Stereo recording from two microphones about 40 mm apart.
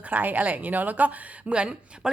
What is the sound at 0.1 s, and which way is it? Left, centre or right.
Speech, right.